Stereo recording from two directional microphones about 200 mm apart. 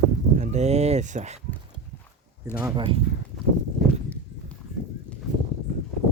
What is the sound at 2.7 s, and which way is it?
Speech, 25° right (ahead or behind).